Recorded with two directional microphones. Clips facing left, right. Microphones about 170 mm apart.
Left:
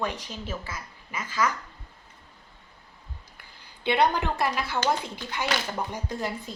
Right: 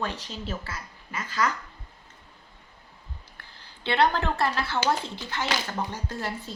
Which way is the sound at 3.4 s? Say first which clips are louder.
Left 4 dB; 15° left (ahead or behind).